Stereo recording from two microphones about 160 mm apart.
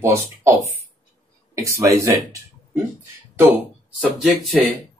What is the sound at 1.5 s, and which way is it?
Speech, 20° right (ahead or behind).